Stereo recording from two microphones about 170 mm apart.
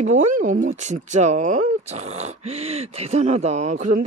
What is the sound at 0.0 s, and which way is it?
Speech, 45° right (ahead or behind).